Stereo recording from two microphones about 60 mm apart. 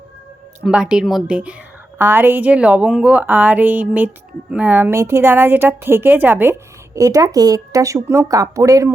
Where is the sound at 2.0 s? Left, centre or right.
Right.